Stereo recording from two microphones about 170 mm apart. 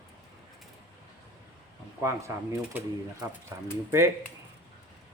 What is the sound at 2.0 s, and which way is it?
Speech, 15° right (ahead or behind).